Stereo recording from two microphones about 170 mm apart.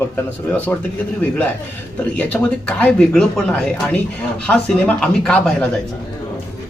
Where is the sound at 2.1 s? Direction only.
5° left (ahead or behind).